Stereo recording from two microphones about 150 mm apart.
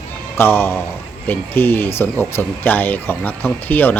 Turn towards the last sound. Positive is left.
turn(degrees=10)  # may be behind; listen again after turning